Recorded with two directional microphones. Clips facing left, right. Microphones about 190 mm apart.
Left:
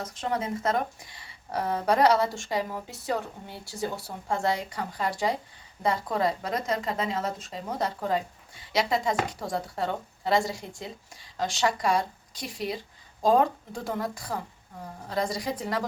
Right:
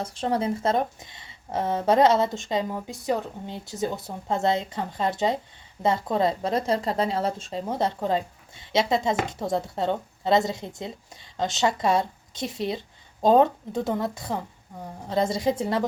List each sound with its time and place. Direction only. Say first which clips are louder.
0.0 s a woman's voice: right 5 dB; 30° right (ahead or behind)